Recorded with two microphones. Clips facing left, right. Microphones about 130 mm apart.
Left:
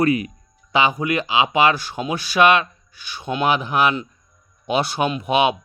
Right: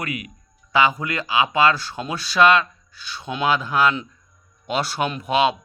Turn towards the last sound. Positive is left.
turn(degrees=20)  # may be behind; listen again after turning